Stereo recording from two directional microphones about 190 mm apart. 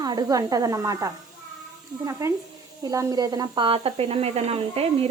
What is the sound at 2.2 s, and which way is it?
Speech, 15° right (ahead or behind).